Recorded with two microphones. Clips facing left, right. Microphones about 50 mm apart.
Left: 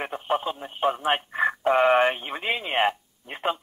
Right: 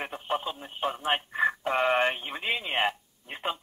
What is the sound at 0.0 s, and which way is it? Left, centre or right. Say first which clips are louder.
Radio: left 5 dB; centre.